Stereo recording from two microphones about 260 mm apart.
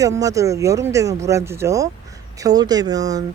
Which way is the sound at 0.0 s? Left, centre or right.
Centre.